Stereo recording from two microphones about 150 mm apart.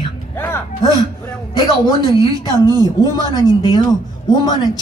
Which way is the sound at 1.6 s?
30° left (ahead or behind).